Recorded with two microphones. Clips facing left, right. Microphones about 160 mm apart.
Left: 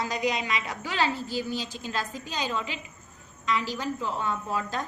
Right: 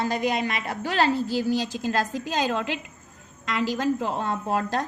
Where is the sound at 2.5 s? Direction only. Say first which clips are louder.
Right 5 dB; 65° right (ahead or behind).